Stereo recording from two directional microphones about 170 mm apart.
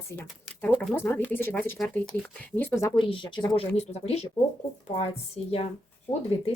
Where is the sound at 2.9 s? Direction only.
30° left (ahead or behind).